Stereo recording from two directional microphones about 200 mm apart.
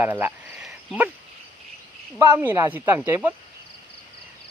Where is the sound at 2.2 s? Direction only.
10° right (ahead or behind).